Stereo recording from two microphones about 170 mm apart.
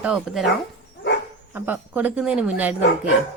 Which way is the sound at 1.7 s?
10° right (ahead or behind).